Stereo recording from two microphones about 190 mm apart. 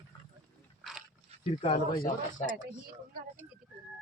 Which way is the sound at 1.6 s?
25° left (ahead or behind).